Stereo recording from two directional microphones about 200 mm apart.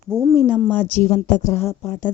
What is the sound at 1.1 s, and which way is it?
Speech, 35° left (ahead or behind).